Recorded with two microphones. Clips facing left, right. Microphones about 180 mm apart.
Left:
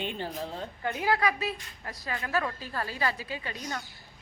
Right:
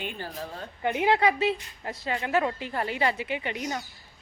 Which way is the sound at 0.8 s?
20° right (ahead or behind).